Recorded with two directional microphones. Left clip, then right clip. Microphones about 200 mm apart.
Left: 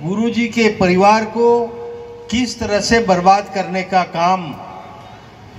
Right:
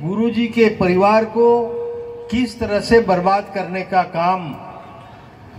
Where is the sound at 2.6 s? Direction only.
45° right (ahead or behind).